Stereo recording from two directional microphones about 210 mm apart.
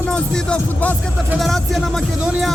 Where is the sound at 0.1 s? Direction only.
5° left (ahead or behind).